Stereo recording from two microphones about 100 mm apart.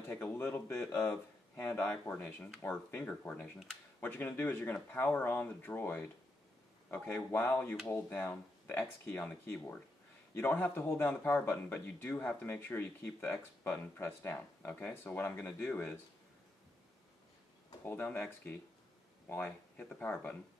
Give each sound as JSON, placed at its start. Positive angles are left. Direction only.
{"t": 0.1, "sound": "speech", "side_deg": 15}
{"t": 10.3, "sound": "speech", "side_deg": 20}
{"t": 17.8, "sound": "speech", "side_deg": 20}
{"t": 19.2, "sound": "speech", "side_deg": 20}